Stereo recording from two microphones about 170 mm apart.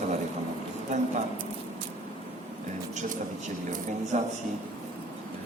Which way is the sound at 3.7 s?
45° right (ahead or behind).